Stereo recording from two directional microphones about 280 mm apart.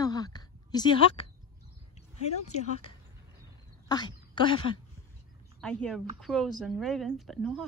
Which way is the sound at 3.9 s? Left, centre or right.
Centre.